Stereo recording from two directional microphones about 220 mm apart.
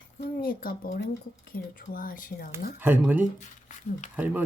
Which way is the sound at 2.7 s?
10° right (ahead or behind).